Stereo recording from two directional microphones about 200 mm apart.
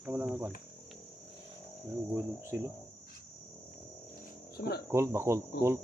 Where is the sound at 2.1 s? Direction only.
10° right (ahead or behind).